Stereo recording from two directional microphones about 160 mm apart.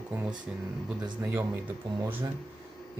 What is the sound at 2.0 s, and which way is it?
Speech, 15° right (ahead or behind).